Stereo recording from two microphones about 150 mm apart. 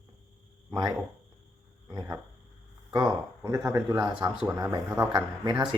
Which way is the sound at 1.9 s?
20° right (ahead or behind).